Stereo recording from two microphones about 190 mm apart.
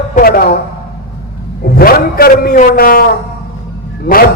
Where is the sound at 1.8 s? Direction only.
50° left (ahead or behind).